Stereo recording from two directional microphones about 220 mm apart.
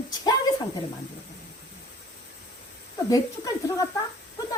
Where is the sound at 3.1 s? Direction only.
15° left (ahead or behind).